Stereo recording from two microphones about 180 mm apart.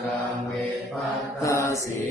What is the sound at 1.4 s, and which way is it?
Mantra, 15° left (ahead or behind).